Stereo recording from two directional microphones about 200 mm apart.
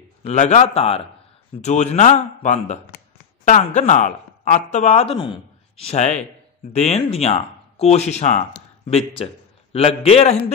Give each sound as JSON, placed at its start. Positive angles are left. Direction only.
{"t": 0.2, "sound": "speech", "side_deg": 35}